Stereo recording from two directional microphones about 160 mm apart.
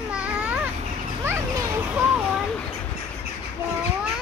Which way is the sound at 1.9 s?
5° right (ahead or behind).